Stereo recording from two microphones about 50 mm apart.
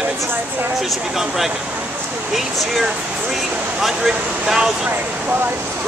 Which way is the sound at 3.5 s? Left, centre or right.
Right.